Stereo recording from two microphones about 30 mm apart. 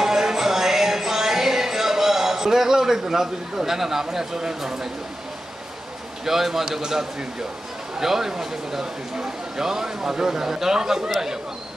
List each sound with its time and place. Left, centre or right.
0.0 s music: centre
4.6 s speech: centre
6.2 s a man's voice: centre